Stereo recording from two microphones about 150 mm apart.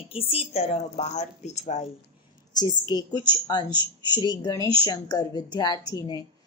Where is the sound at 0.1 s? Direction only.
40° left (ahead or behind).